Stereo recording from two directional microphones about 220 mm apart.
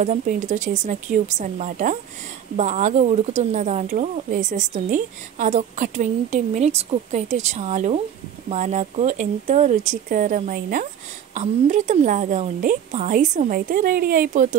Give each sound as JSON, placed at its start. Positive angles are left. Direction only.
{"t": 0.0, "sound": "speech", "side_deg": -35}